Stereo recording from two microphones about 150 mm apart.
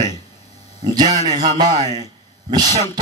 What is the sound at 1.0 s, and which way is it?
Speech, 50° right (ahead or behind).